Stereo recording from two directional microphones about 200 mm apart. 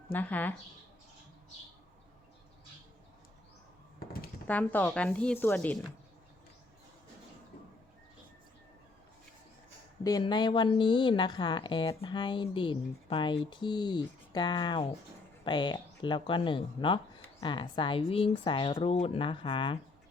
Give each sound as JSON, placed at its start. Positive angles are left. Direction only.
{"t": 0.1, "sound": "speech", "side_deg": 10}
{"t": 4.4, "sound": "speech", "side_deg": 10}
{"t": 10.0, "sound": "speech", "side_deg": 20}